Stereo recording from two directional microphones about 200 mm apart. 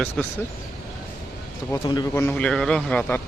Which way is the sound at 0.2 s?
5° left (ahead or behind).